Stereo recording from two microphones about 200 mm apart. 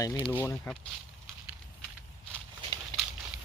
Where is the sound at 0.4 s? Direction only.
10° left (ahead or behind).